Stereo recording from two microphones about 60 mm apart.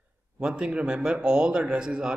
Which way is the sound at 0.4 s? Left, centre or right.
Centre.